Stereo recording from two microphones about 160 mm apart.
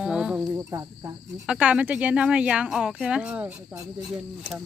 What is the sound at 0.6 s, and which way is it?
Cricket, 20° right (ahead or behind).